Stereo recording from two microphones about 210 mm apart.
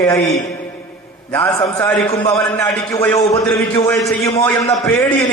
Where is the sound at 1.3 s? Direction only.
15° left (ahead or behind).